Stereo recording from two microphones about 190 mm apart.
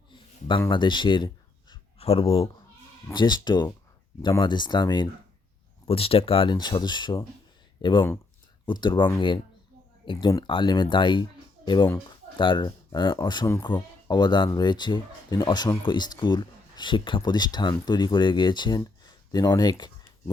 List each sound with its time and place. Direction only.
0.1 s a sound: 25° left (ahead or behind)
0.7 s speech: 25° left (ahead or behind)
1.7 s writing: 30° left (ahead or behind)
3.1 s speech: 25° left (ahead or behind)
10.1 s speech: 25° left (ahead or behind)
18.8 s a sound: 20° left (ahead or behind)